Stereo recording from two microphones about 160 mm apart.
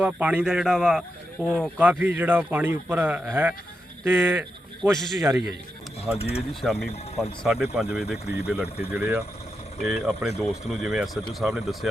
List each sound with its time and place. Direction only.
0.0 s speech: 10° right (ahead or behind)
4.8 s speech: 5° left (ahead or behind)
5.2 s speech: 15° right (ahead or behind)
6.1 s speech: 40° left (ahead or behind)
6.5 s speech: centre (ahead or behind)
8.1 s speech: 80° left
8.9 s speech: 5° right (ahead or behind)